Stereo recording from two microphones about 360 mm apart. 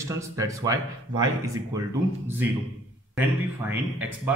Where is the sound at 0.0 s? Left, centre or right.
Centre.